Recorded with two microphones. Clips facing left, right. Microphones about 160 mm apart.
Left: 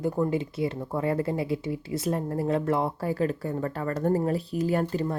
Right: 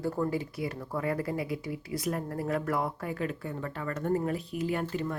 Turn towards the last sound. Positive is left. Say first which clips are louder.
# left 5 dB
turn(degrees=35)  # may be behind; listen again after turning